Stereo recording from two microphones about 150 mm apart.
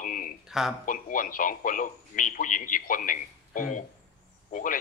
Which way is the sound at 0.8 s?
65° left (ahead or behind).